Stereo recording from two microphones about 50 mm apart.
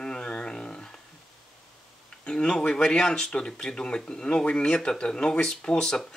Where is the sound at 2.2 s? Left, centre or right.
Left.